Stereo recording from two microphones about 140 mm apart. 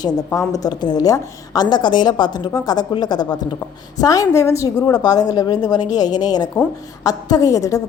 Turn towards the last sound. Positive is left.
turn(degrees=25)  # may be behind; listen again after turning